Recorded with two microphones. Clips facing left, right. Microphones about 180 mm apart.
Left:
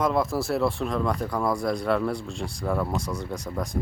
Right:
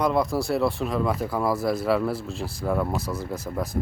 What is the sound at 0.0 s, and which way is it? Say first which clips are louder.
Speech: right 1 dB; centre (ahead or behind).